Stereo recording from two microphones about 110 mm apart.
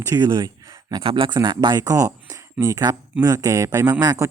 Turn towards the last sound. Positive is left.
turn(degrees=-30)  # may be behind; listen again after turning